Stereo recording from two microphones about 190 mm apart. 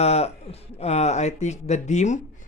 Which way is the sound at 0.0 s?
35° left (ahead or behind).